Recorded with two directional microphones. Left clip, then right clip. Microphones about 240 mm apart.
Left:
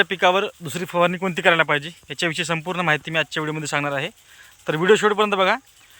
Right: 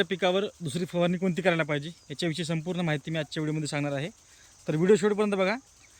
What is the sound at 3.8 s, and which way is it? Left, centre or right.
A man's voice, left.